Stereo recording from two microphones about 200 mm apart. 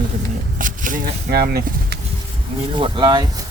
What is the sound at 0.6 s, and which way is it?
Speech, 40° right (ahead or behind).